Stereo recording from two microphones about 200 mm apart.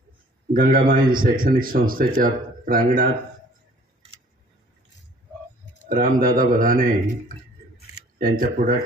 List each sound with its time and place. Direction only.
0.5 s speech: 45° right (ahead or behind)
5.9 s speech: 45° right (ahead or behind)
8.2 s speech: 45° right (ahead or behind)